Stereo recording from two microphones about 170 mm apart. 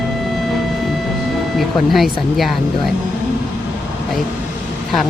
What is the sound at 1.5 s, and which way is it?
A woman's voice, centre (ahead or behind).